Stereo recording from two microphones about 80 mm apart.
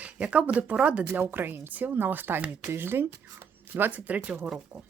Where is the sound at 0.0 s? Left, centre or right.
Centre.